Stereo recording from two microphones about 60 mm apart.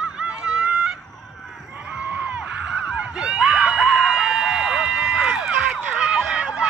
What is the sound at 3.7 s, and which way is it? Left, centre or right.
Chicken, centre.